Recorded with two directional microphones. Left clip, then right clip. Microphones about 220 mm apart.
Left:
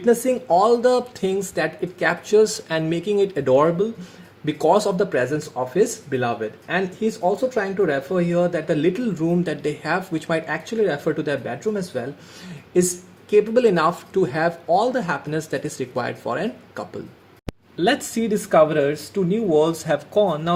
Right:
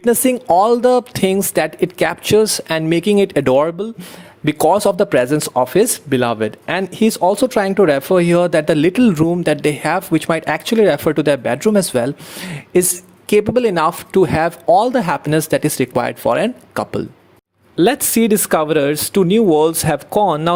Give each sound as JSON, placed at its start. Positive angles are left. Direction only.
{"t": 0.0, "sound": "speech", "side_deg": -45}